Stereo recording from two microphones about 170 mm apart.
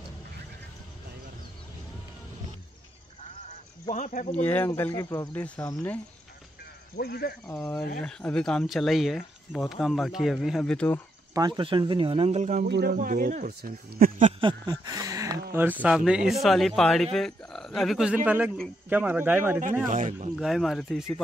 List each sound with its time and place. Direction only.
3.9 s speech: 45° left (ahead or behind)
4.5 s speech: 10° left (ahead or behind)
7.0 s speech: 70° left (ahead or behind)
7.5 s speech: 10° left (ahead or behind)
11.3 s speech: 25° right (ahead or behind); by 12.6 s 45° right (ahead or behind)
12.6 s speech: 75° right (ahead or behind); by 14.3 s 55° right (ahead or behind)
14.4 s speech: 25° right (ahead or behind)
19.9 s speech: 45° right (ahead or behind)
20.3 s speech: centre (ahead or behind)